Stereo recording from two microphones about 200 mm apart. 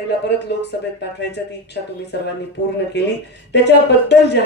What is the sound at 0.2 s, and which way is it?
Speech, 60° left (ahead or behind).